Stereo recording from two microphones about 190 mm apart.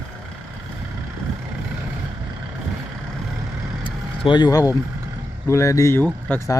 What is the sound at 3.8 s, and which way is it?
Vehicle, 25° left (ahead or behind).